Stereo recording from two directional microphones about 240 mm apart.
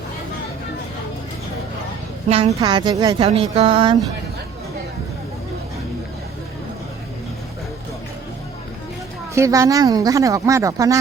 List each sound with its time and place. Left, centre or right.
2.5 s speech: centre
9.3 s speech: centre